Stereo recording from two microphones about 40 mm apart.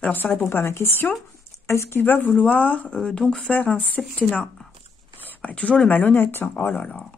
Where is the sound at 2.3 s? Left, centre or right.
Left.